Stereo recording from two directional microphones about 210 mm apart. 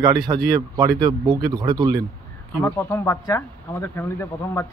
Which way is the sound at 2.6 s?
10° left (ahead or behind).